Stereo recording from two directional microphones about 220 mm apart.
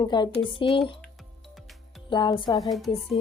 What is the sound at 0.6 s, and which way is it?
Music, centre (ahead or behind).